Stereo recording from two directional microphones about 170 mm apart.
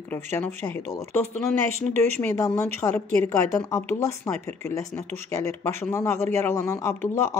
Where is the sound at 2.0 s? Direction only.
15° left (ahead or behind).